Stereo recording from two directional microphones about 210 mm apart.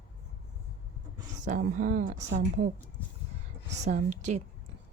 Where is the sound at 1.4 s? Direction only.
40° right (ahead or behind).